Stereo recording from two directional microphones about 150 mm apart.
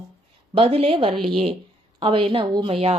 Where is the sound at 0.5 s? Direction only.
40° right (ahead or behind).